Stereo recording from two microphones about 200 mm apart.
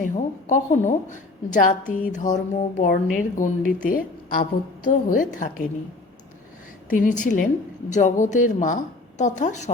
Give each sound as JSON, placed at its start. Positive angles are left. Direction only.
{"t": 0.0, "sound": "a woman's voice", "side_deg": 40}
{"t": 6.9, "sound": "speech", "side_deg": 40}